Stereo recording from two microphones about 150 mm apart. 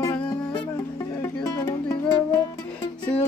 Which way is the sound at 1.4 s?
25° left (ahead or behind).